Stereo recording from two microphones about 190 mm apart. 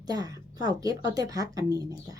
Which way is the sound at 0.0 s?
20° right (ahead or behind).